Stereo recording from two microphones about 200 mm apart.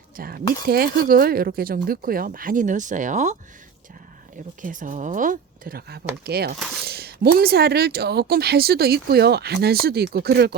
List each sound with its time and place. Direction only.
0.2 s speech: 45° right (ahead or behind)
4.6 s speech: 40° right (ahead or behind)